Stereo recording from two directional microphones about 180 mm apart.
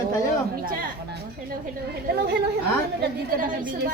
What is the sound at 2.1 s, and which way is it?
Speech, 65° right (ahead or behind).